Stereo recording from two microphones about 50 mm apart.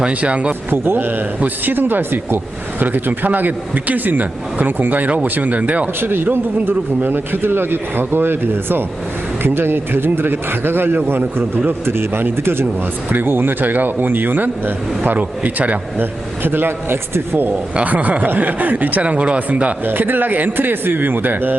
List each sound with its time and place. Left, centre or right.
0.0 s speech: right
0.7 s speech: right
6.0 s speech: right
17.7 s speech: right
19.8 s speech: right